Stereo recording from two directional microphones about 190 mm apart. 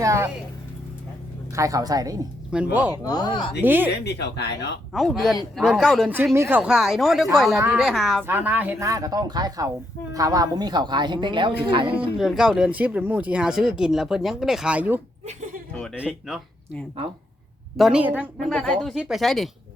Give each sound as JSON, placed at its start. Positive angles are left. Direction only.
{"t": 0.0, "sound": "speech", "side_deg": -15}
{"t": 1.5, "sound": "speech", "side_deg": -15}
{"t": 2.5, "sound": "speech", "side_deg": -5}
{"t": 2.9, "sound": "speech", "side_deg": 20}
{"t": 3.6, "sound": "speech", "side_deg": -10}
{"t": 4.0, "sound": "speech", "side_deg": 60}
{"t": 4.9, "sound": "a woman's voice", "side_deg": 0}
{"t": 12.1, "sound": "speech", "side_deg": 0}
{"t": 18.4, "sound": "speech", "side_deg": 5}